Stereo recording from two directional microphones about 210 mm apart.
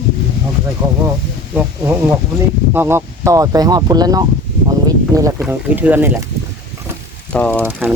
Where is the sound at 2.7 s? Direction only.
10° right (ahead or behind).